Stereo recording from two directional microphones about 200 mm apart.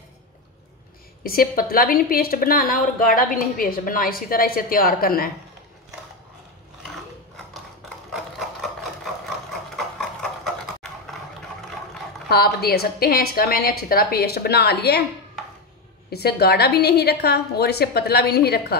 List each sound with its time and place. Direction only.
1.2 s a woman's voice: 45° left (ahead or behind)
8.1 s sewing machine: centre (ahead or behind)
9.5 s a sound: centre (ahead or behind)
12.3 s a woman's voice: 50° left (ahead or behind)
16.1 s a woman's voice: 50° left (ahead or behind)